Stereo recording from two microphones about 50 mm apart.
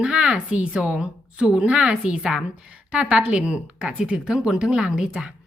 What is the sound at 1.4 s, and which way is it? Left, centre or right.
Speech, centre.